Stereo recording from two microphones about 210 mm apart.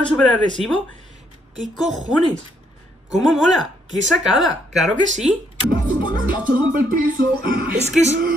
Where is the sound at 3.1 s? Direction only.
Centre (ahead or behind).